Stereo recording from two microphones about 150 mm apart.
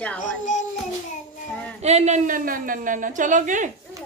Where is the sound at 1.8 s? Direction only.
45° right (ahead or behind).